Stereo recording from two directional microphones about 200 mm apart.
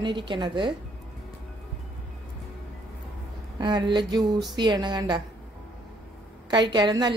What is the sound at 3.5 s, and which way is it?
A woman's voice, 20° right (ahead or behind).